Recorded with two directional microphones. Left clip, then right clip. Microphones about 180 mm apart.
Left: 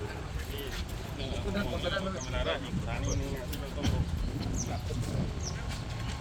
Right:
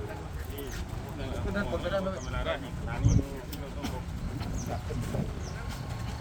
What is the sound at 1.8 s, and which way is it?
Speech, 60° right (ahead or behind).